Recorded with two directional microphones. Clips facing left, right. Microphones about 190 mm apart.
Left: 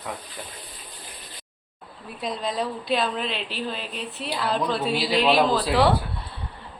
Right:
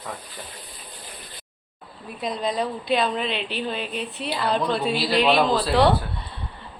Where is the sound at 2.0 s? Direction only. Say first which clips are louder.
Right 2 dB; centre (ahead or behind).